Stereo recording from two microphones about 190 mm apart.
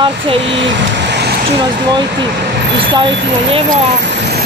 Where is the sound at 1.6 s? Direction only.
25° right (ahead or behind).